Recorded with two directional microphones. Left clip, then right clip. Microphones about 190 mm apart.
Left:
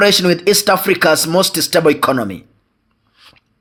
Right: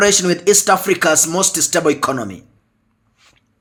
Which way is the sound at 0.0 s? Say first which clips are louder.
Left 2 dB; 25° left (ahead or behind).